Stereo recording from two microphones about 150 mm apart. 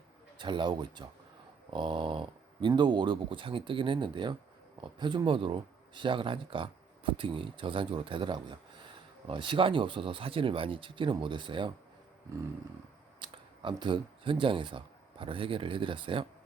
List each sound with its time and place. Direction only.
0.3 s speech: 30° right (ahead or behind)
13.1 s speech: 35° right (ahead or behind)